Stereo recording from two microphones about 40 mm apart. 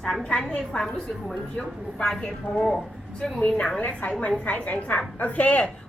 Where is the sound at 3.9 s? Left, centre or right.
Left.